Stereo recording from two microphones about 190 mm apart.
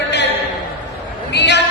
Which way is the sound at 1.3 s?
65° left (ahead or behind).